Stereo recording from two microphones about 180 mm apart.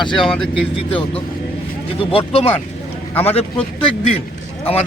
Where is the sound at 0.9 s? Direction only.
30° left (ahead or behind).